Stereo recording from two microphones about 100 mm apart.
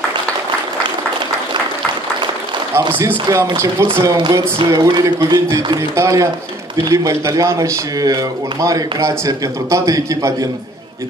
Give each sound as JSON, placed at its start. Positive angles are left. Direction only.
{"t": 3.3, "sound": "a man's voice", "side_deg": -30}